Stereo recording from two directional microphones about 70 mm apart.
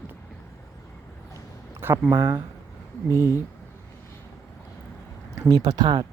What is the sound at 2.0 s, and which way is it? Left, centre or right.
Speech, right.